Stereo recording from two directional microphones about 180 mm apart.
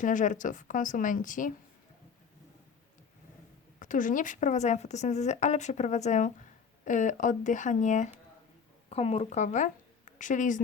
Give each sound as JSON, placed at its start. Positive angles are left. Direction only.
{"t": 0.0, "sound": "a woman's voice", "side_deg": 45}
{"t": 3.8, "sound": "a woman's voice", "side_deg": 45}